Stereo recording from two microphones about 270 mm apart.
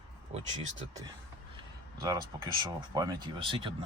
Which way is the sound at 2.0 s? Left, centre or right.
Centre.